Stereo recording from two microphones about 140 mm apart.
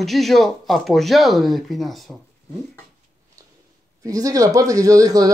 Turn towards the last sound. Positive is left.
turn(degrees=-25)  # may be behind; listen again after turning